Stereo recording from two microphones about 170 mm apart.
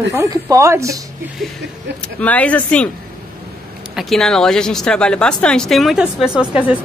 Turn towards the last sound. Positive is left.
turn(degrees=-5)  # may be behind; listen again after turning